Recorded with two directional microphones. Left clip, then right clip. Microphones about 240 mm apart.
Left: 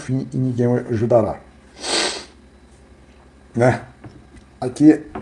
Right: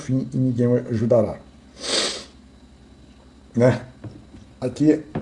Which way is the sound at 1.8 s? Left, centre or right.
Centre.